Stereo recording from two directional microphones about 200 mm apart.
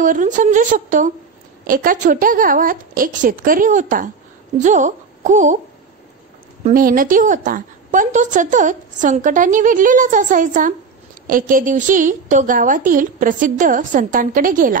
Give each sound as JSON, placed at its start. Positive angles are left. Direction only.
{"t": 0.0, "sound": "a woman's voice", "side_deg": -40}
{"t": 6.6, "sound": "a woman's voice", "side_deg": -45}